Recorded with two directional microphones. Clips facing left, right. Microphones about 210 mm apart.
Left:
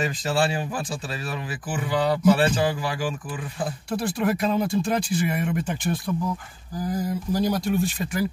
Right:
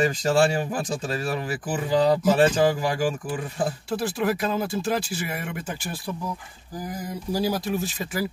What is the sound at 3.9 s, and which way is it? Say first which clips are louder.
Speech: left 3 dB; centre (ahead or behind).